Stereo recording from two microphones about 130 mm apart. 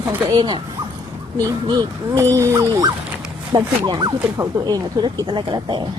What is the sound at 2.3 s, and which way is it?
Dog, 25° right (ahead or behind).